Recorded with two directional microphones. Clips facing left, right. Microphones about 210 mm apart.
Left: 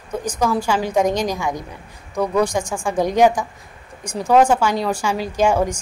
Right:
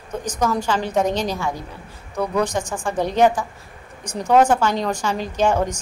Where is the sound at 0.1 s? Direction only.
10° left (ahead or behind).